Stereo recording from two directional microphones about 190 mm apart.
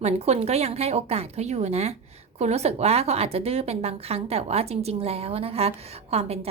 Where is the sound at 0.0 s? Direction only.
35° right (ahead or behind).